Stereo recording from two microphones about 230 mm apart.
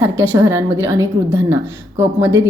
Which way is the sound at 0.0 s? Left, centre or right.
Centre.